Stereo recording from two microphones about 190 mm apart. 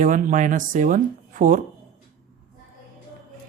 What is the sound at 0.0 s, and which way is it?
Speech, 45° right (ahead or behind).